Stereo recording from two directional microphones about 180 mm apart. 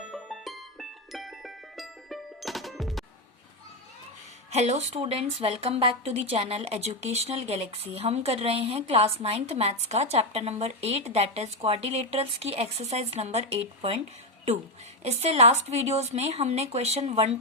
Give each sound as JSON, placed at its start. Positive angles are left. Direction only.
{"t": 0.1, "sound": "music", "side_deg": 0}
{"t": 4.5, "sound": "speech", "side_deg": -35}
{"t": 15.0, "sound": "speech", "side_deg": -35}